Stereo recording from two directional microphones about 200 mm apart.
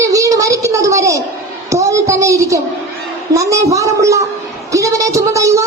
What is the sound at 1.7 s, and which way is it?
A woman's voice, 15° right (ahead or behind).